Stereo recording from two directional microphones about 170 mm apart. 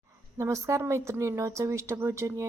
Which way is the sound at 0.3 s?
15° right (ahead or behind).